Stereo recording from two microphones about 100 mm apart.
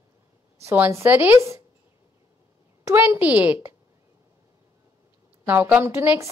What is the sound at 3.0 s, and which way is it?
Speech, 15° right (ahead or behind).